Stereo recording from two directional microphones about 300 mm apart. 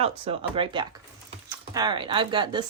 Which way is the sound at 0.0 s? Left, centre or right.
Centre.